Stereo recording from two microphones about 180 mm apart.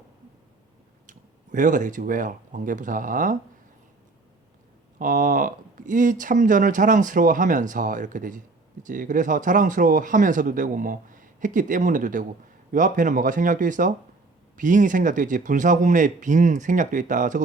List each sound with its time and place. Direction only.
1.5 s speech: 45° right (ahead or behind)
4.9 s speech: 45° right (ahead or behind)